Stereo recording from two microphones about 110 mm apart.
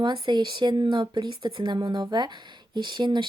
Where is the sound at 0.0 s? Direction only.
45° right (ahead or behind).